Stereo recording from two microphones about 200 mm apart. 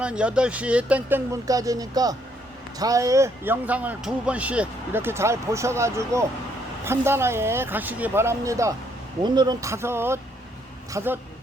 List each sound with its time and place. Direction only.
0.0 s speech: 5° right (ahead or behind)